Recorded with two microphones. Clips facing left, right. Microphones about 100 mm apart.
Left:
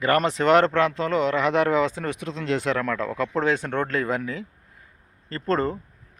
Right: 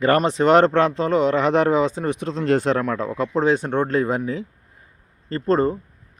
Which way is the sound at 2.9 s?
20° right (ahead or behind).